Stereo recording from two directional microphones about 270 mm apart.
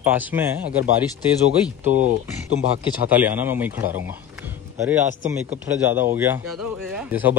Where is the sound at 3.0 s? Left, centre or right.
Centre.